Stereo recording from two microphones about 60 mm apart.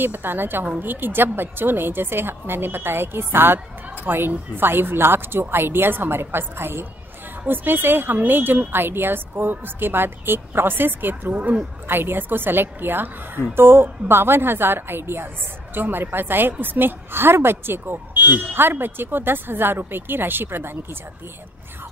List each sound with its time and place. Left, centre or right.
0.0 s a woman's voice: right